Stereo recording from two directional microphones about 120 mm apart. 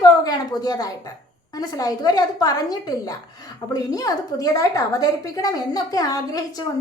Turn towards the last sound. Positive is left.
turn(degrees=30)  # may be behind; listen again after turning